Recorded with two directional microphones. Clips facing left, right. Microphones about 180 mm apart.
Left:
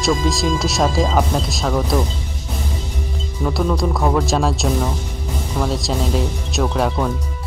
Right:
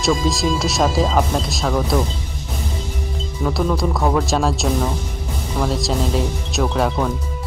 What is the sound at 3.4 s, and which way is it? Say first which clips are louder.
Speech: even; centre (ahead or behind).